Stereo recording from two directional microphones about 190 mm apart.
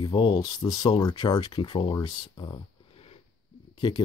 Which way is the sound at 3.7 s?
25° left (ahead or behind).